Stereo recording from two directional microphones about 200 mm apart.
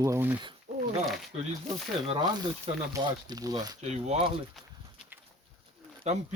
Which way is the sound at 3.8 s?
35° right (ahead or behind).